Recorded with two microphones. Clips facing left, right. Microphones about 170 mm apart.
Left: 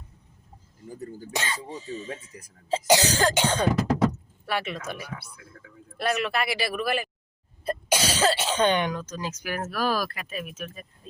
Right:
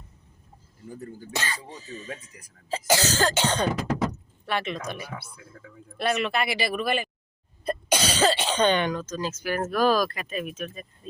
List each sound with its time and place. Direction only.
0.9 s speech: 20° left (ahead or behind)